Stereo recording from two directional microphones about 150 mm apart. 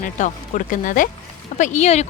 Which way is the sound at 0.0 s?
60° left (ahead or behind).